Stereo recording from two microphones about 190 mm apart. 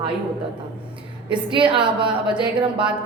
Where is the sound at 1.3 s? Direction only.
25° right (ahead or behind).